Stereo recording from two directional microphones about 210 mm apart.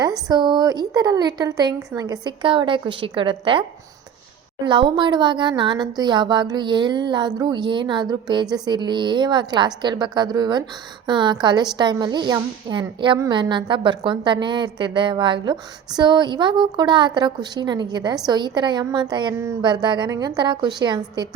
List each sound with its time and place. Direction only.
0.3 s a woman's voice: 20° right (ahead or behind)
4.6 s a woman's voice: 20° right (ahead or behind)